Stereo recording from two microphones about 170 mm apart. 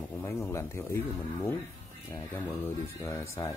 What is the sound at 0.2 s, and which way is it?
Speech, 15° left (ahead or behind).